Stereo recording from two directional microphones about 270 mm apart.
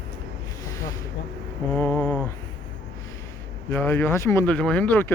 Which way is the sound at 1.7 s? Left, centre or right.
Centre.